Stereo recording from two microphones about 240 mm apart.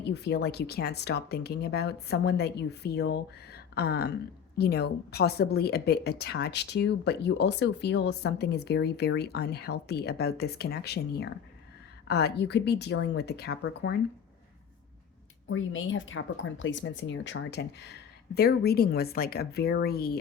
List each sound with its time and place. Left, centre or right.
0.0 s a woman's voice: left
15.4 s a woman's voice: left